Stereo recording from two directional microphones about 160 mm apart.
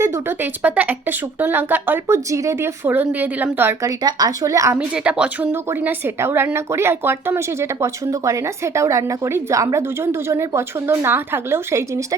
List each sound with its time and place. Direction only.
0.0 s a woman's voice: 10° right (ahead or behind)
4.8 s a woman's voice: 5° right (ahead or behind)